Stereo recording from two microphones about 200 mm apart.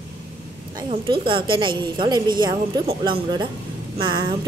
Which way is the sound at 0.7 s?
25° right (ahead or behind).